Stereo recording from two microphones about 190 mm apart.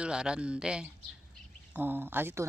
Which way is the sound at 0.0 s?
5° right (ahead or behind).